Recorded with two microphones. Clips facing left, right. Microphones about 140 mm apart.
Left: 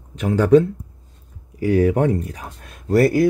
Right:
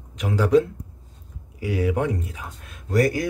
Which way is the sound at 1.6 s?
40° left (ahead or behind).